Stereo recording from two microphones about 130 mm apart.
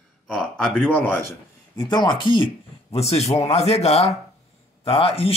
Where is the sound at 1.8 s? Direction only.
35° left (ahead or behind).